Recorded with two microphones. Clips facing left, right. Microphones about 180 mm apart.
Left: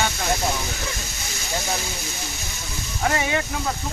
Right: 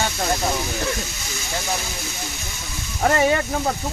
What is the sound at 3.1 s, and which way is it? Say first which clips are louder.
Speech: right 6 dB; 45° right (ahead or behind).